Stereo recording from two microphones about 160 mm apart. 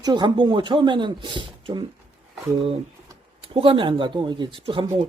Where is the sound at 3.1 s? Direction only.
35° right (ahead or behind).